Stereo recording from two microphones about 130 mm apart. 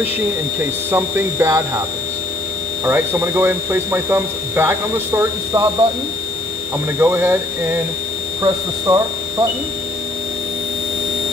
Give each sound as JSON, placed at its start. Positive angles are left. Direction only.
{"t": 0.9, "sound": "speech", "side_deg": -20}
{"t": 2.8, "sound": "speech", "side_deg": -15}
{"t": 7.0, "sound": "speech", "side_deg": -15}